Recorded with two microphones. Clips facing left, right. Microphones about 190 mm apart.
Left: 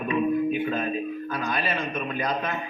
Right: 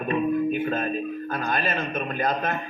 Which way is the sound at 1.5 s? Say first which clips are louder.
Right 2 dB; 45° right (ahead or behind).